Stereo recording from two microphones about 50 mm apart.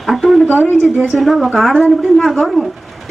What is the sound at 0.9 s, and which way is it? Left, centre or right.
Speech, right.